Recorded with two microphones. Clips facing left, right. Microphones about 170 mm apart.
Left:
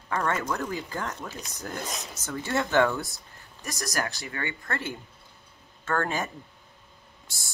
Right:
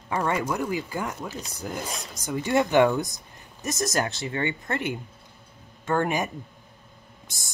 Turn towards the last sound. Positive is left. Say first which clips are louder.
# right 2 dB
turn(degrees=-20)  # may be behind; listen again after turning